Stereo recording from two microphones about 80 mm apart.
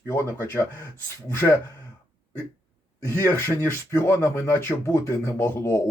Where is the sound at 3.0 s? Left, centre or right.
Left.